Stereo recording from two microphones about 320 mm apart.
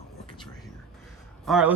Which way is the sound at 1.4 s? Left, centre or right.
Centre.